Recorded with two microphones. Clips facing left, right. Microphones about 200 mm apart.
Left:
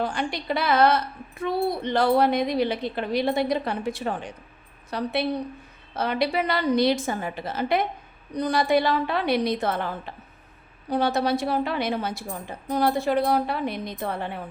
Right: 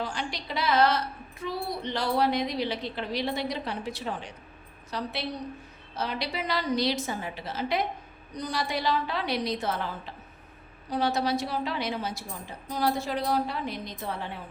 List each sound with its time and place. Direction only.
0.0 s a woman's voice: 55° left (ahead or behind)